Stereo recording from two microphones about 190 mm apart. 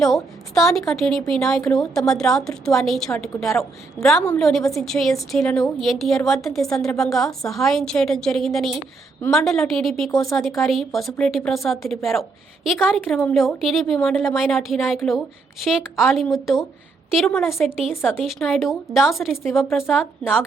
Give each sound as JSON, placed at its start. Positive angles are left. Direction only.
{"t": 0.0, "sound": "a woman's voice", "side_deg": 0}